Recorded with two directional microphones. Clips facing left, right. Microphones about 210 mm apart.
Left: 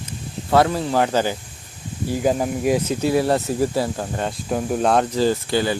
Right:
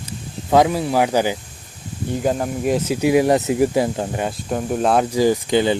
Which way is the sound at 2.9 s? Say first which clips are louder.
Right 3 dB; 15° right (ahead or behind).